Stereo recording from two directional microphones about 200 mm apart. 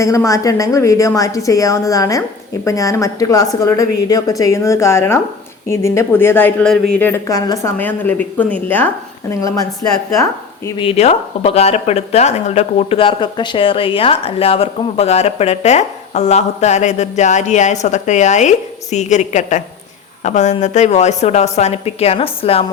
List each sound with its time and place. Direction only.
0.0 s speech: 15° left (ahead or behind)
10.8 s speech: 30° left (ahead or behind)